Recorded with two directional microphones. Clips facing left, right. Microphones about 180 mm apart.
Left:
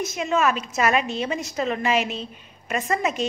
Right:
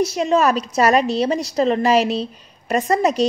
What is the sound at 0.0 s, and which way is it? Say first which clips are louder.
A woman's voice: right 6 dB; 35° right (ahead or behind).